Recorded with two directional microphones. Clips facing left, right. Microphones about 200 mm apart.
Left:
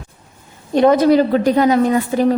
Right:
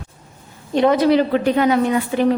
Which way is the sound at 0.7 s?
45° left (ahead or behind).